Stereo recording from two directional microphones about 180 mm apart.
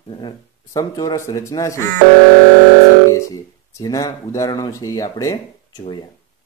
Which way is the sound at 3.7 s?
20° left (ahead or behind).